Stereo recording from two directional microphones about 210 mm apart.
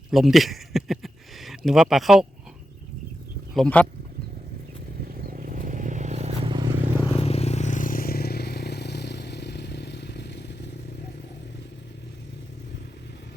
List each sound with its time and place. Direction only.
0.1 s speech: centre (ahead or behind)
3.5 s speech: 5° left (ahead or behind)
5.1 s vehicle: 45° right (ahead or behind); by 6.9 s 20° right (ahead or behind)
7.1 s vehicle: 30° left (ahead or behind); by 10.7 s 55° left (ahead or behind)